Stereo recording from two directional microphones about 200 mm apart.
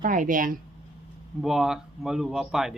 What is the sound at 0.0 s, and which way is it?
Speech, 40° right (ahead or behind).